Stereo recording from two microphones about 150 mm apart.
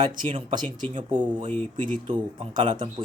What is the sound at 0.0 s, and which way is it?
Speech, 30° right (ahead or behind).